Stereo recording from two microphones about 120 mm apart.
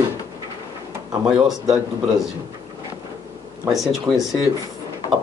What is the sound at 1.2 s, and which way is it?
Speech, 5° right (ahead or behind).